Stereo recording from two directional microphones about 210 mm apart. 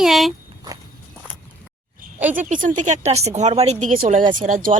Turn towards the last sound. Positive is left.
turn(degrees=-40)  # may be behind; listen again after turning